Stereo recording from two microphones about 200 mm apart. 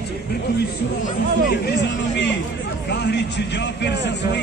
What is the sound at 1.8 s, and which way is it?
A man's voice, 60° left (ahead or behind).